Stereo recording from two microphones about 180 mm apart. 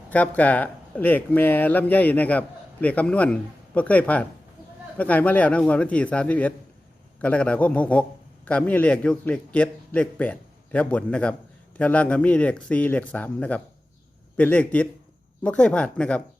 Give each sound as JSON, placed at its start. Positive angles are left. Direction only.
{"t": 0.1, "sound": "a man's voice", "side_deg": 10}